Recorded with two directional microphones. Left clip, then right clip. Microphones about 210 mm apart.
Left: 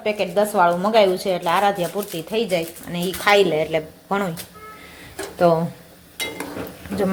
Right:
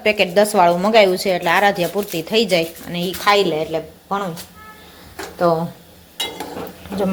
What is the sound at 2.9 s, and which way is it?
Speech, centre (ahead or behind).